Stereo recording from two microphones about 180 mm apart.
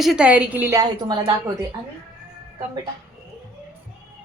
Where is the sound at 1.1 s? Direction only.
25° right (ahead or behind).